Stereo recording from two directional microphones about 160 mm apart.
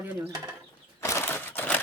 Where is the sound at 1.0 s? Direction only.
15° left (ahead or behind).